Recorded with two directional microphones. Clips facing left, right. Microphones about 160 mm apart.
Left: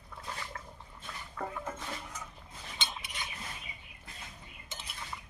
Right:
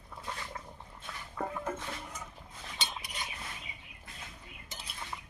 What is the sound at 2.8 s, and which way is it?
Cutlery, 40° right (ahead or behind).